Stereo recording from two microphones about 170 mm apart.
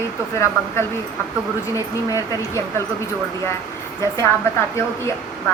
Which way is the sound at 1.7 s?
20° left (ahead or behind).